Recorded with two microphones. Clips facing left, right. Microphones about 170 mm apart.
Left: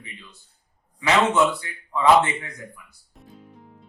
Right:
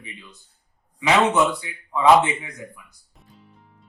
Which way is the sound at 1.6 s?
15° right (ahead or behind).